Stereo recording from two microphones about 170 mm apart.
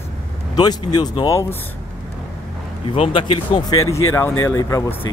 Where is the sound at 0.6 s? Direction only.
25° left (ahead or behind).